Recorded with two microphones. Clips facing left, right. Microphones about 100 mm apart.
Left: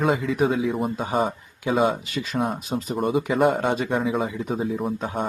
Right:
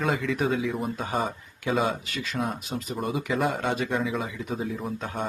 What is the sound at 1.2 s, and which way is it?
Speech, 5° left (ahead or behind).